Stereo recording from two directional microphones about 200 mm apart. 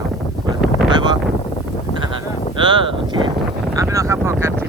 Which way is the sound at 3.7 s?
15° right (ahead or behind).